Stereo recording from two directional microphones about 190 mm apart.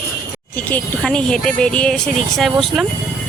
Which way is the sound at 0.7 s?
5° left (ahead or behind).